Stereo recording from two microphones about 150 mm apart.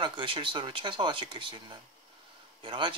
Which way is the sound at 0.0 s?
35° right (ahead or behind).